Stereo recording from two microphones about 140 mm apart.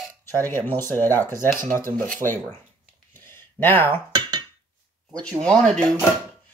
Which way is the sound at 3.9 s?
30° right (ahead or behind).